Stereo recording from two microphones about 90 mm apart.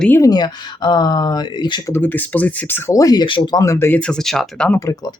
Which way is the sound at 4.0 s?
5° left (ahead or behind).